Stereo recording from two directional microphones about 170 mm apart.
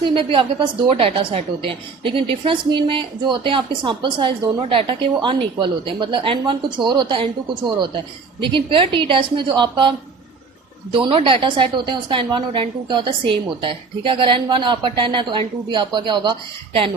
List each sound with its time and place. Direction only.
0.1 s a woman's voice: 30° right (ahead or behind)
8.4 s a woman's voice: 30° right (ahead or behind)
10.9 s a woman's voice: 30° right (ahead or behind)